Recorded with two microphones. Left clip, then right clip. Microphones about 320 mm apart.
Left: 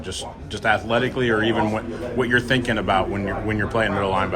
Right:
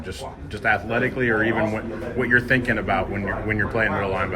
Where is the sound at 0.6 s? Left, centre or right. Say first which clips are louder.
Left 1 dB; centre.